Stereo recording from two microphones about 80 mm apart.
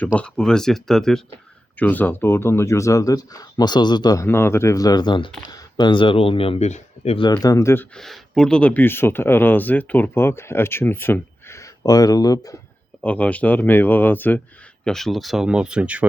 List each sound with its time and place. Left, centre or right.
0.2 s speech: centre
1.8 s speech: left
4.2 s speech: left
4.8 s speech: left
5.5 s speech: left
7.2 s speech: left
7.6 s speech: left
7.9 s speech: centre; by 12.5 s left
13.0 s speech: centre
14.8 s speech: centre